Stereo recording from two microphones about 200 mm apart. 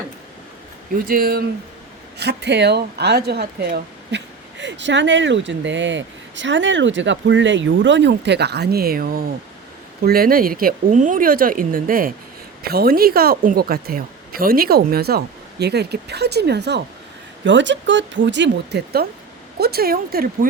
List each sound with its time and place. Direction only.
0.9 s speech: 45° right (ahead or behind)